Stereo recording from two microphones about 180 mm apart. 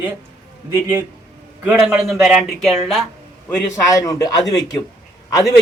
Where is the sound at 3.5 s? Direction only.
20° left (ahead or behind).